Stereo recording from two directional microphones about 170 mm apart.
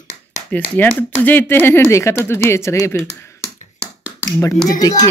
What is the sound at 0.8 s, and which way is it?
Speech, 10° left (ahead or behind).